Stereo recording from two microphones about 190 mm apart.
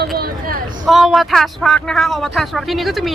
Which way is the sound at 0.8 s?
Centre (ahead or behind).